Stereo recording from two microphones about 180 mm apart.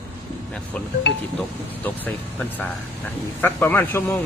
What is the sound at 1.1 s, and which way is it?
Speech, 75° left (ahead or behind).